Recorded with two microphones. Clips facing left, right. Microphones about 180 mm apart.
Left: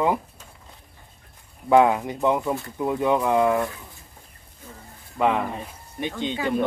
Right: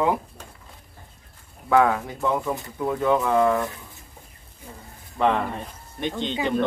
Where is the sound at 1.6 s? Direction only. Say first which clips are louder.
Left 2 dB; 20° left (ahead or behind).